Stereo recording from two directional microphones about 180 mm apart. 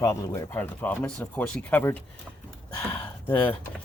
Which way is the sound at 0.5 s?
10° left (ahead or behind).